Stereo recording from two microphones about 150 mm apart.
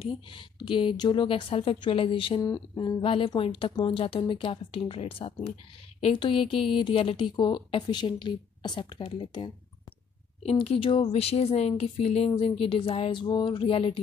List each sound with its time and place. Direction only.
0.0 s a woman's voice: 35° left (ahead or behind)